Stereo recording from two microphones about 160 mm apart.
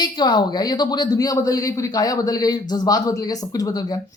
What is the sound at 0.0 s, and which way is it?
A woman's voice, 25° left (ahead or behind).